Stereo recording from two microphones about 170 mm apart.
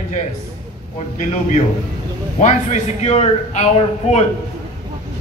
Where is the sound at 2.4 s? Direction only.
45° left (ahead or behind).